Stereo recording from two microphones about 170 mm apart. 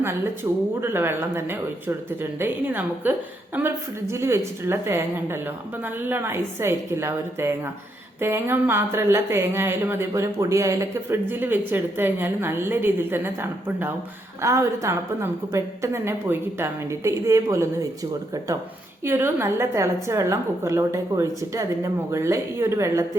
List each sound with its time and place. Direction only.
0.8 s a woman's voice: 15° right (ahead or behind)
19.0 s a woman's voice: 15° right (ahead or behind)